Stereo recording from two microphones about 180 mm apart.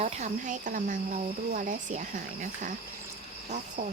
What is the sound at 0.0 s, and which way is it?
Speech, 40° right (ahead or behind).